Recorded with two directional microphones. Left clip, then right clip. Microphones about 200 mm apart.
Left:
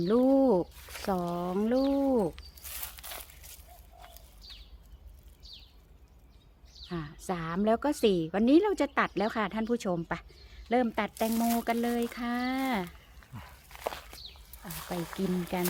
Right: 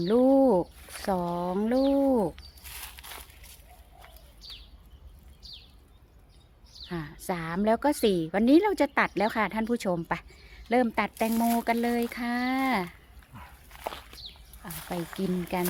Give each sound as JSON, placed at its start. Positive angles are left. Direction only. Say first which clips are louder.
{"t": 0.0, "sound": "a woman's voice", "louder": "right 3 dB", "side_deg": -10}
{"t": 2.3, "sound": "a sound", "louder": "right 1 dB", "side_deg": 25}
{"t": 6.8, "sound": "a woman's voice", "louder": "right 2 dB", "side_deg": -15}
{"t": 13.7, "sound": "walk", "louder": "even", "side_deg": 20}
{"t": 15.2, "sound": "a woman's voice", "louder": "right 1 dB", "side_deg": -15}